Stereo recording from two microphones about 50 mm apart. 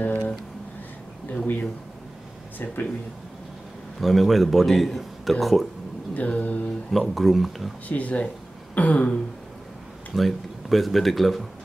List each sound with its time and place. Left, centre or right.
0.0 s a sound: left
2.6 s mantra: left
4.0 s a man's voice: centre
6.1 s mantra: left
6.9 s a man's voice: centre
7.9 s a sound: left
10.1 s a man's voice: centre